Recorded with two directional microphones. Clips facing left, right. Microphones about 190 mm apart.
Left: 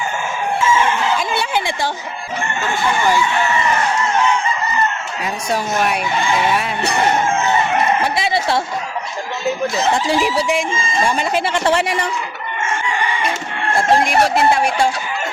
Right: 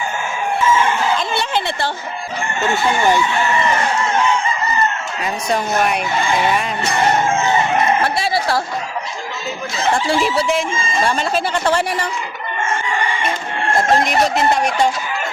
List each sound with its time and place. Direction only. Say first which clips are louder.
1.3 s a sound: even; 10° left (ahead or behind)
5.2 s speech: right 1 dB; centre (ahead or behind)
8.0 s speech: even; 20° left (ahead or behind)
9.9 s a woman's voice: right 4 dB; 15° left (ahead or behind)
13.7 s speech: left 1 dB; 10° left (ahead or behind)